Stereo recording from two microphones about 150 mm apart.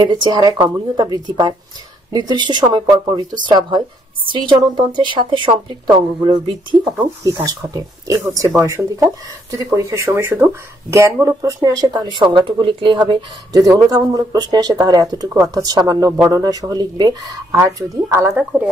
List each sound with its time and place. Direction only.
0.0 s speech: 30° right (ahead or behind)